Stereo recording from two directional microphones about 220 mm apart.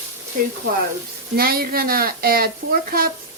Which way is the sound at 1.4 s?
40° right (ahead or behind).